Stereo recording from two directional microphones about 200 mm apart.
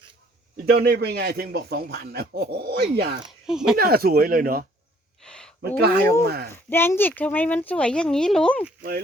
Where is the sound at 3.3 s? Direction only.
5° right (ahead or behind).